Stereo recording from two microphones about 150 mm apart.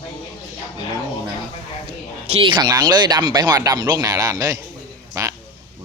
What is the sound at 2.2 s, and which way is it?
Speech, 40° right (ahead or behind).